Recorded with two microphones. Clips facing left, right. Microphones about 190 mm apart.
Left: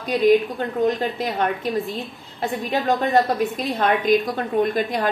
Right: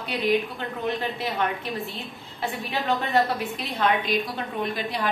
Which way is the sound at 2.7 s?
45° left (ahead or behind).